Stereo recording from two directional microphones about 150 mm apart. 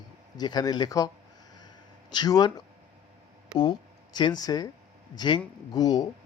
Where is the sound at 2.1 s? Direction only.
30° left (ahead or behind).